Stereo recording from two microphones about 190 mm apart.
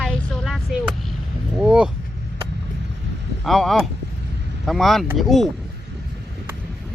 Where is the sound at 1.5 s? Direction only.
5° right (ahead or behind).